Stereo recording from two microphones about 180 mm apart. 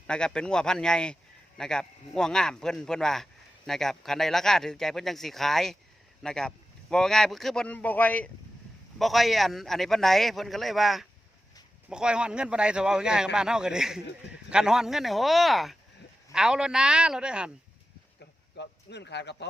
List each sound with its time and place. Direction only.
0.1 s speech: 5° left (ahead or behind)
18.5 s speech: 70° left (ahead or behind)